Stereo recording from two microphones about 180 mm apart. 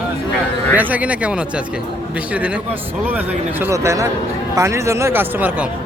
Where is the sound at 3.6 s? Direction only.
15° right (ahead or behind).